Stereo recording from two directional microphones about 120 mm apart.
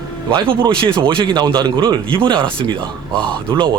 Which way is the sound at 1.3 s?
40° right (ahead or behind).